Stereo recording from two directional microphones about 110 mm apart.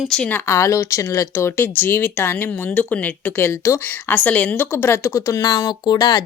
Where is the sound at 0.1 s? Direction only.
10° left (ahead or behind).